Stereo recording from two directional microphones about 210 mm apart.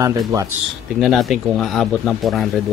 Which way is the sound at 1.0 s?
Centre (ahead or behind).